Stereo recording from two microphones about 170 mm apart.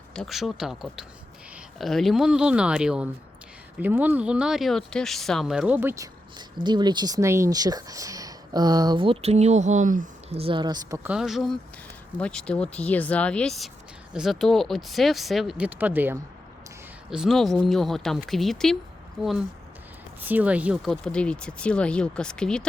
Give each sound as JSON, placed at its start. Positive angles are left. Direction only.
{"t": 0.1, "sound": "speech", "side_deg": 0}
{"t": 6.6, "sound": "speech", "side_deg": -25}
{"t": 10.3, "sound": "speech", "side_deg": -30}
{"t": 10.9, "sound": "speech", "side_deg": -15}
{"t": 11.2, "sound": "speech", "side_deg": 0}
{"t": 20.2, "sound": "speech", "side_deg": -10}